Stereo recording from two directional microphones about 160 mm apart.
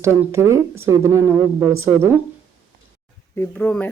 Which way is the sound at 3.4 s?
10° left (ahead or behind).